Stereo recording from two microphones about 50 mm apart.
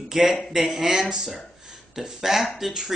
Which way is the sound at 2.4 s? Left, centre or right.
Centre.